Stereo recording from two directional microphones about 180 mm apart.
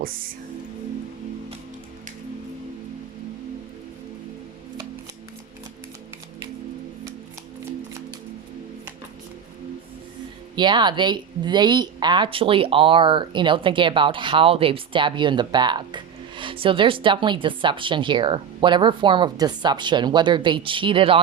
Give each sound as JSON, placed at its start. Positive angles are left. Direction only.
{"t": 0.0, "sound": "speech", "side_deg": -55}
{"t": 10.5, "sound": "speech", "side_deg": -25}